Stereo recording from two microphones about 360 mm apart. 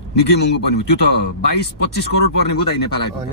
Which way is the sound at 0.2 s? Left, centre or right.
Left.